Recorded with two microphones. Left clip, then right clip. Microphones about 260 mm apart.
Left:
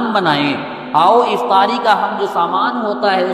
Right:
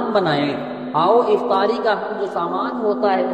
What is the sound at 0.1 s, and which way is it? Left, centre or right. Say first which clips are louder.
A man's voice: left 4 dB; left.